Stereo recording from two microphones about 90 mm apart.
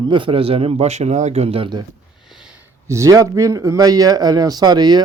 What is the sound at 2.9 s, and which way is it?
Speech, 40° right (ahead or behind).